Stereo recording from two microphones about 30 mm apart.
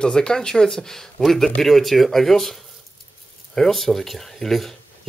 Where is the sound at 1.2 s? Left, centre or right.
Centre.